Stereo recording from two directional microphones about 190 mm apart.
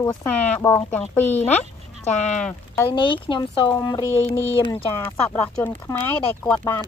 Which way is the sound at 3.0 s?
25° left (ahead or behind).